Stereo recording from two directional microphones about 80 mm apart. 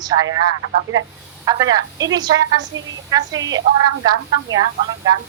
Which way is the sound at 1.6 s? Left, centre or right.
Right.